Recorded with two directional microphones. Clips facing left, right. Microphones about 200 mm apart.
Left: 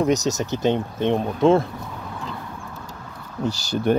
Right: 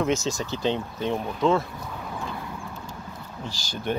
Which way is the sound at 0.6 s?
45° left (ahead or behind).